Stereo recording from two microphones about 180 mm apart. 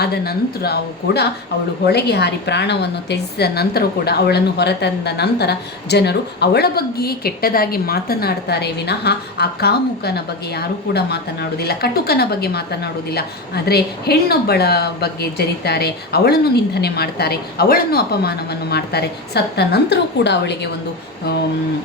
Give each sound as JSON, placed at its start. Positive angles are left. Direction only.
{"t": 0.0, "sound": "a woman's voice", "side_deg": 60}